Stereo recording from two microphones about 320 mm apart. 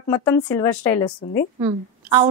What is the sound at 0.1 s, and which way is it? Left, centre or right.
A woman's voice, centre.